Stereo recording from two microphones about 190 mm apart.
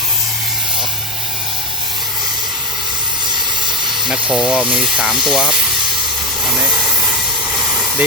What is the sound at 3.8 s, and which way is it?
Hiss, centre (ahead or behind).